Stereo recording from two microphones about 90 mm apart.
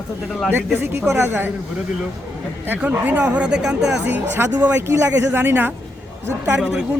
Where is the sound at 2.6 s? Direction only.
20° right (ahead or behind).